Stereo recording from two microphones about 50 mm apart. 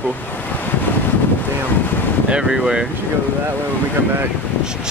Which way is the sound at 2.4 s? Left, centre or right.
Centre.